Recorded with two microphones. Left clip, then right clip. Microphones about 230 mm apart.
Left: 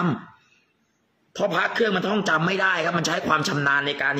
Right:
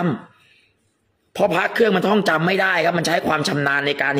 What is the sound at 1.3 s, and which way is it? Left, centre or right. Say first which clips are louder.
A man's voice: right 4 dB; right.